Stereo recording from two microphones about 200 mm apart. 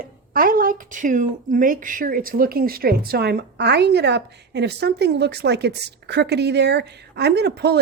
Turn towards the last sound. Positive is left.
turn(degrees=-55)  # may be behind; listen again after turning